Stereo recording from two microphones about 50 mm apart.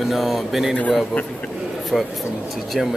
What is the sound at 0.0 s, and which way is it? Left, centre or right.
Speech, centre.